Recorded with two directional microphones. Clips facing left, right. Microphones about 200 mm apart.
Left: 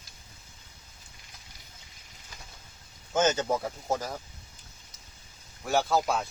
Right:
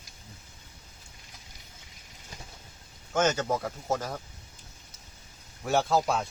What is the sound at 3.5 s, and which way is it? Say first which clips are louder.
Speech: even; 5° left (ahead or behind).